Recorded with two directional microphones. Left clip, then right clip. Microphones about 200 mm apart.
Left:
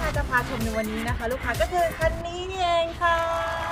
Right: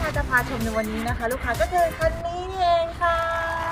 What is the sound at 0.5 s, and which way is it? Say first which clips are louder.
Speech: right 2 dB; centre (ahead or behind).